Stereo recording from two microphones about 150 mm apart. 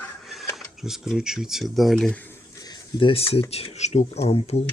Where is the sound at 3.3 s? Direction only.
40° left (ahead or behind).